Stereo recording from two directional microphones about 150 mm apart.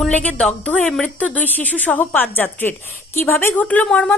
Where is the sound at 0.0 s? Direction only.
10° left (ahead or behind).